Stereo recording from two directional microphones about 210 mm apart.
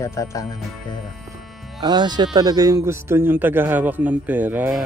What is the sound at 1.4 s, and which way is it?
Music, centre (ahead or behind).